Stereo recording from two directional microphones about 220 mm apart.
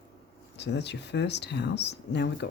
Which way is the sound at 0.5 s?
50° left (ahead or behind).